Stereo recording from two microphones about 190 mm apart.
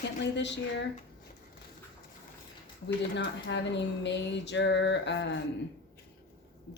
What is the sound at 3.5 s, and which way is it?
Speech, 65° left (ahead or behind).